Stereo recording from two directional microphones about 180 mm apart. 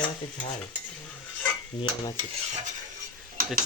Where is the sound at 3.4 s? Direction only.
50° right (ahead or behind).